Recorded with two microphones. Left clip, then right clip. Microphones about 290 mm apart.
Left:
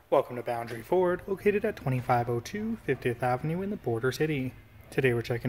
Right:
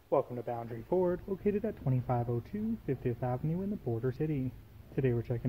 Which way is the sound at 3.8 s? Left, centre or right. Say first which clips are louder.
Left 7 dB; left.